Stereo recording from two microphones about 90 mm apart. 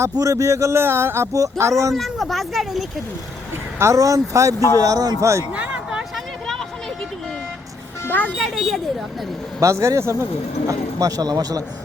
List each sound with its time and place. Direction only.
0.0 s speech: 40° right (ahead or behind)
2.0 s speech: centre (ahead or behind)
3.8 s speech: 35° right (ahead or behind)
5.5 s vehicle: 15° right (ahead or behind)
8.0 s music: 20° left (ahead or behind)
8.3 s speech: 5° right (ahead or behind)
9.6 s speech: 35° right (ahead or behind)
10.7 s speech: 40° right (ahead or behind)